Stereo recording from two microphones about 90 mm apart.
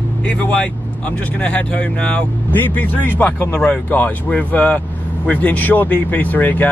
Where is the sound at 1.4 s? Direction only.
15° left (ahead or behind).